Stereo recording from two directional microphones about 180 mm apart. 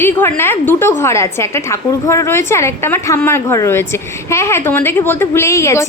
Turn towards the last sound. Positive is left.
turn(degrees=15)  # may be behind; listen again after turning